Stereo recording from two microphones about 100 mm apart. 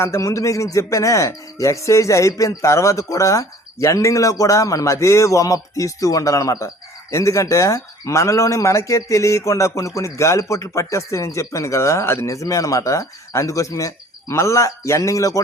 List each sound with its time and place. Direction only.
0.0 s speech: 30° left (ahead or behind)